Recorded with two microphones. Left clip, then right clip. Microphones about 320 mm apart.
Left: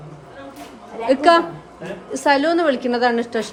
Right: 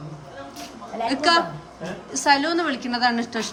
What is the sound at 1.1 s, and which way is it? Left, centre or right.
A woman's voice, centre.